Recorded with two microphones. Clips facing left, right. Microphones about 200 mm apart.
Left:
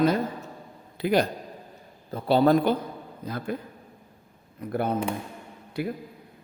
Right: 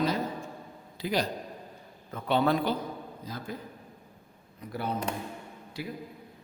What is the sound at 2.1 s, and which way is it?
Speech, 35° left (ahead or behind).